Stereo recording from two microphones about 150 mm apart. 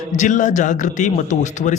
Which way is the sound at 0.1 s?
55° left (ahead or behind).